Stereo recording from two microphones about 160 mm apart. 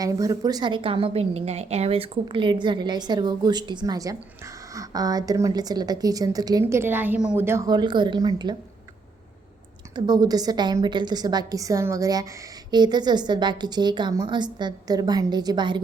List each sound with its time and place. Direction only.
0.0 s a woman's voice: 20° right (ahead or behind)
9.9 s a woman's voice: 25° right (ahead or behind)